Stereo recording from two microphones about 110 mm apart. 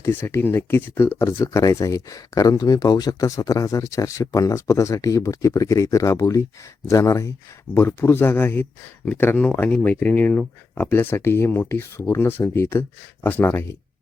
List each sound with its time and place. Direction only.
0.1 s speech: 20° left (ahead or behind)